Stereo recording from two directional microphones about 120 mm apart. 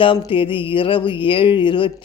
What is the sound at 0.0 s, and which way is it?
Speech, 45° left (ahead or behind).